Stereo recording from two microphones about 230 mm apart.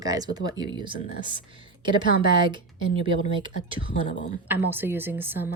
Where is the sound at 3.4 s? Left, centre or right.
Right.